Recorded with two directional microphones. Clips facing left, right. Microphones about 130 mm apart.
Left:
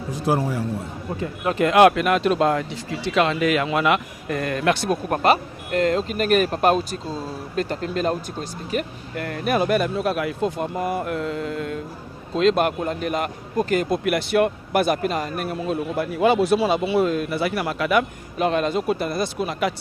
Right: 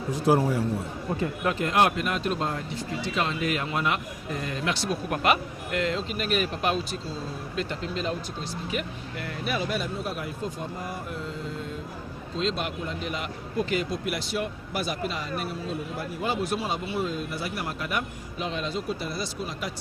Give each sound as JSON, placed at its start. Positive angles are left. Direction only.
{"t": 1.5, "sound": "a man's voice", "side_deg": 90}
{"t": 14.0, "sound": "speech", "side_deg": 60}